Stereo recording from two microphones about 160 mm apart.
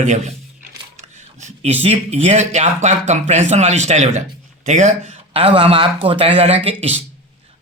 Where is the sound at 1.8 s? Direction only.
40° right (ahead or behind).